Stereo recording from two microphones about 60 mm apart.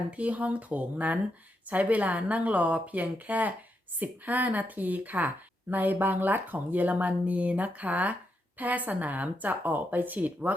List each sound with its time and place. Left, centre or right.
0.1 s speech: right